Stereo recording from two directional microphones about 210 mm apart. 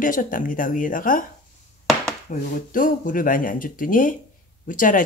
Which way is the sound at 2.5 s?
40° left (ahead or behind).